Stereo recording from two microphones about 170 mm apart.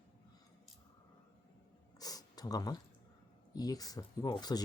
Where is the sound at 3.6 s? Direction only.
20° left (ahead or behind).